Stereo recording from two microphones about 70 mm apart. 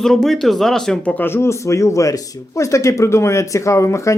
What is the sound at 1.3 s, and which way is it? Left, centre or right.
Speech, left.